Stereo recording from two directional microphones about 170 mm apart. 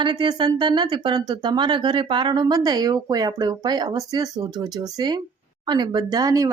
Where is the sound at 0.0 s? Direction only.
25° right (ahead or behind).